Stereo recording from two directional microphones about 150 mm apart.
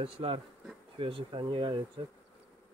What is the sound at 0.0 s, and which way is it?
Speech, 40° right (ahead or behind).